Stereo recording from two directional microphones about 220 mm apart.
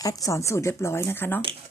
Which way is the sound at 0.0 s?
15° left (ahead or behind).